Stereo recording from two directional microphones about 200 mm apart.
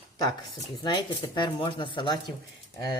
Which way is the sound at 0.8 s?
25° left (ahead or behind).